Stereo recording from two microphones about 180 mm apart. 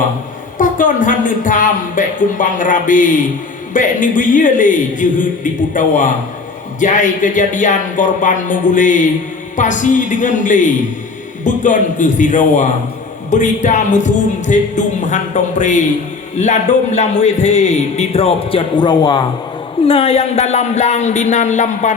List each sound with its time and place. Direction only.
0.6 s a man's voice: 45° left (ahead or behind)